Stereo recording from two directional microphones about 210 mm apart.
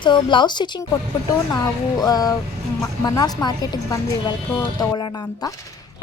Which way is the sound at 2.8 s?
20° left (ahead or behind).